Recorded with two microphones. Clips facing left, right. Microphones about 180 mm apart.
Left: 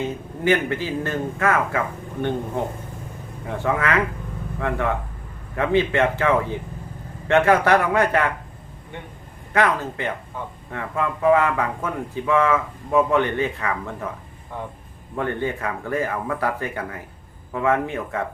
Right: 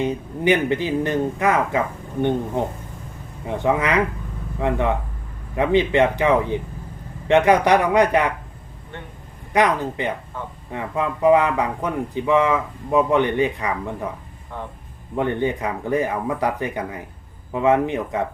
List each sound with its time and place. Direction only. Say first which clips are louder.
0.0 s speech: right 3 dB; 15° right (ahead or behind)
3.4 s speech: right 3 dB; 20° right (ahead or behind)
9.5 s speech: right 2 dB; 15° right (ahead or behind)
15.1 s speech: right 3 dB; 20° right (ahead or behind)